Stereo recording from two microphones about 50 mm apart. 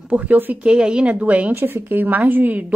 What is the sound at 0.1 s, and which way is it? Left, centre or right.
Speech, right.